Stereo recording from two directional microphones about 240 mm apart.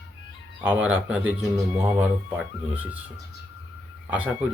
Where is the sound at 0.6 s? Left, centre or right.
Centre.